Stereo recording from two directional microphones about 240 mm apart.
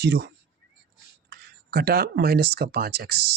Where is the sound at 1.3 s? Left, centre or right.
Right.